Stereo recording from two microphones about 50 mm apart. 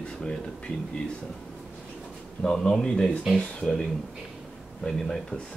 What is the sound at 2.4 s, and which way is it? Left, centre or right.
Speech, centre.